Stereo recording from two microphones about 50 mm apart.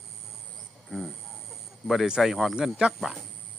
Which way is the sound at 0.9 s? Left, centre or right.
Centre.